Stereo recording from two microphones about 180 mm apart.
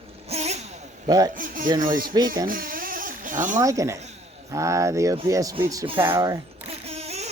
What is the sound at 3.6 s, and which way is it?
Speech, 20° right (ahead or behind).